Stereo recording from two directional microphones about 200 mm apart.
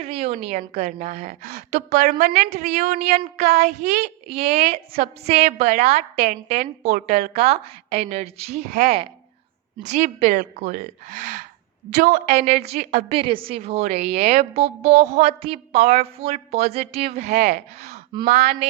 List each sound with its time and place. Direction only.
0.0 s a woman's voice: 30° right (ahead or behind)
9.9 s a woman's voice: 35° right (ahead or behind)